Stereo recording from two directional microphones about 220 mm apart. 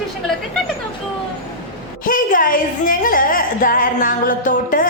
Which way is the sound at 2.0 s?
40° left (ahead or behind).